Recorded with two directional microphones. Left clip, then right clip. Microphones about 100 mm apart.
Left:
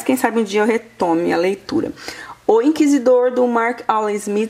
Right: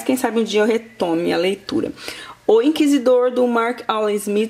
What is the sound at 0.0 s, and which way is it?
Speech, centre (ahead or behind).